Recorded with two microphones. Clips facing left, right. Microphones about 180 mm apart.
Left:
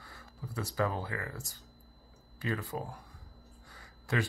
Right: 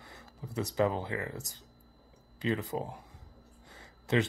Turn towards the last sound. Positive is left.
turn(degrees=-25)  # may be behind; listen again after turning